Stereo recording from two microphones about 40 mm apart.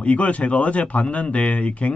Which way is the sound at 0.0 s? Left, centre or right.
Left.